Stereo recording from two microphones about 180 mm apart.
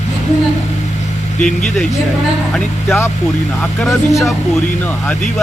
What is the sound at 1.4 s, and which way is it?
Speech, 5° left (ahead or behind).